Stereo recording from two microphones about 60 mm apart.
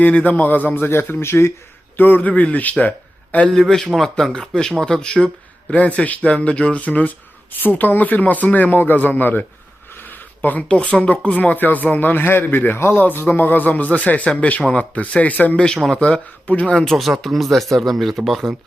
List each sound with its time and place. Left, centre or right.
0.0 s speech: left
2.0 s speech: left
3.5 s speech: centre; by 9.5 s left
9.9 s a sound: left
10.7 s speech: centre
15.5 s speech: centre
16.7 s speech: centre